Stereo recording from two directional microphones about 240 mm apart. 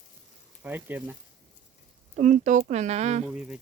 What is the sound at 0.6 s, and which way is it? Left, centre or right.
Speech, centre.